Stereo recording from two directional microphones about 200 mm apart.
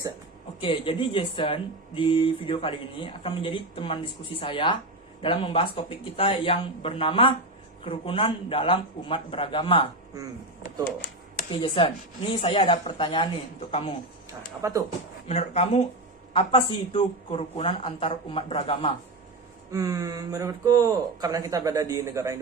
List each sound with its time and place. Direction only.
0.6 s speech: 25° left (ahead or behind)
11.5 s speech: 25° left (ahead or behind)
14.3 s speech: 15° right (ahead or behind)
15.3 s speech: 30° left (ahead or behind)
19.7 s speech: 20° right (ahead or behind)